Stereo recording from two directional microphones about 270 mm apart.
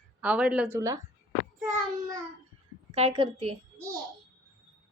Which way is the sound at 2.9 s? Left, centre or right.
Right.